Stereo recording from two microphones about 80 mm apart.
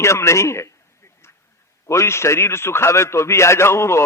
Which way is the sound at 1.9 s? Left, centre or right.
Left.